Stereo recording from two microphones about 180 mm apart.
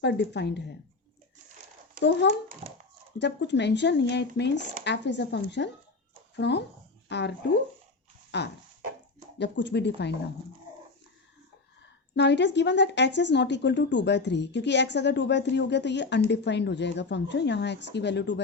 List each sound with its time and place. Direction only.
0.0 s speech: 70° left (ahead or behind)
2.0 s speech: 75° left (ahead or behind)
2.6 s dog: 35° right (ahead or behind)
3.2 s speech: 75° left (ahead or behind)
12.1 s speech: 75° left (ahead or behind)